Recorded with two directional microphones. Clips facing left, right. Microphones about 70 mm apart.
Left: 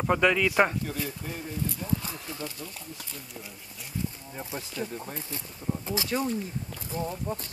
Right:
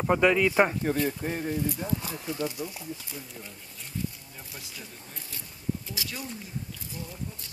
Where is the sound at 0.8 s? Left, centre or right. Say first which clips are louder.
Right 7 dB; right.